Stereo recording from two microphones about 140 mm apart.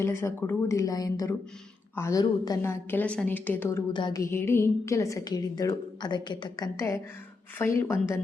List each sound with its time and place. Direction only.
0.0 s a woman's voice: 20° left (ahead or behind)
3.9 s music: 35° left (ahead or behind)
4.2 s a woman's voice: 20° left (ahead or behind)